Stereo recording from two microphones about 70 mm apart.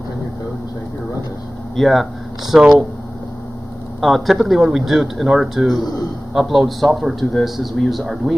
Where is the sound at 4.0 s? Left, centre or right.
Centre.